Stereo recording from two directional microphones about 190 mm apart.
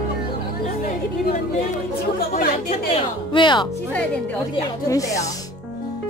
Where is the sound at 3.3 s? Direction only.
25° left (ahead or behind).